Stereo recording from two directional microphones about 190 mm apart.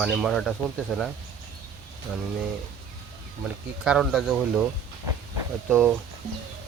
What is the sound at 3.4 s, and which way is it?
Speech, 5° right (ahead or behind).